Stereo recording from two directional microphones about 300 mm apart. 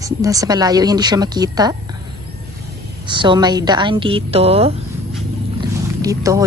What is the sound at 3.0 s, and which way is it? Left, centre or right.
Speech, centre.